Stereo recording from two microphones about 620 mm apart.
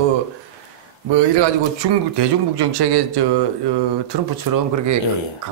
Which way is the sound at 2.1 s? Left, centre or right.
Right.